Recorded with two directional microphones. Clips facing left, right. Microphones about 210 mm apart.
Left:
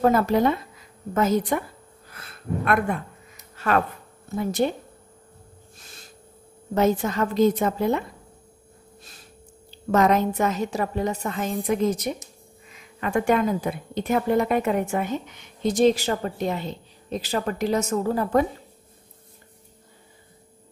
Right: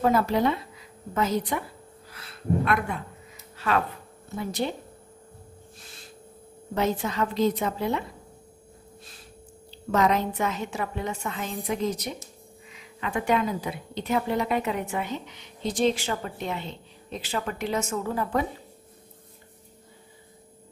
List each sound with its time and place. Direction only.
0.0 s a woman's voice: 50° left (ahead or behind)
2.0 s music: 50° left (ahead or behind)
3.5 s a sound: 50° left (ahead or behind)
4.4 s a woman's voice: 45° left (ahead or behind)
6.7 s a woman's voice: 45° left (ahead or behind)
9.8 s a woman's voice: 45° left (ahead or behind)